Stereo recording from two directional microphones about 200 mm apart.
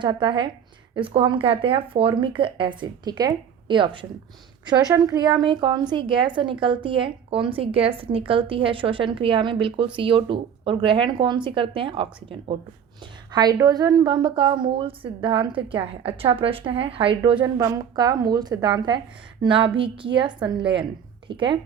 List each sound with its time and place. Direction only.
0.0 s a woman's voice: 25° right (ahead or behind)